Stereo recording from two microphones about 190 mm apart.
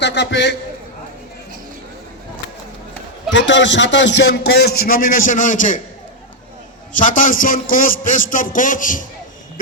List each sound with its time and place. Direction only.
0.0 s a man's voice: 65° left (ahead or behind)
3.3 s a man's voice: 70° left (ahead or behind); by 5.8 s 45° left (ahead or behind)
6.9 s a man's voice: 45° left (ahead or behind)